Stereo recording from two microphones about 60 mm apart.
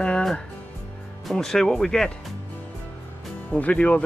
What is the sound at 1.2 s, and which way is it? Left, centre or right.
Speech, centre.